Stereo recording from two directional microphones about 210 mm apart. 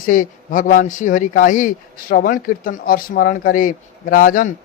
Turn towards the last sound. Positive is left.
turn(degrees=40)  # may be behind; listen again after turning